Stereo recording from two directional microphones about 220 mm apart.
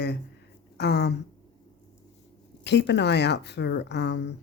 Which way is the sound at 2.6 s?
50° left (ahead or behind).